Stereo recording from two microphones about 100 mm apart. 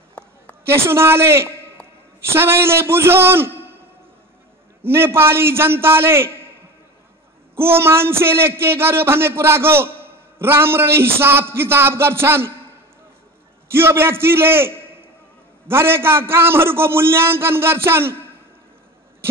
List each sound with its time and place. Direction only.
0.7 s a man's voice: 25° right (ahead or behind)
4.8 s a man's voice: 25° right (ahead or behind)
7.5 s a man's voice: 25° right (ahead or behind)
13.7 s a man's voice: 25° right (ahead or behind)